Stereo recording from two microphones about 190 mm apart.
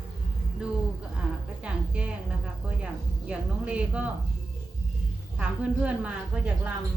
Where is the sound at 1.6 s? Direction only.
5° right (ahead or behind).